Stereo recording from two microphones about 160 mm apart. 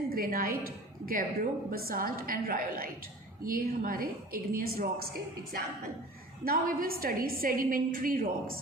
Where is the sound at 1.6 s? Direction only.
65° right (ahead or behind).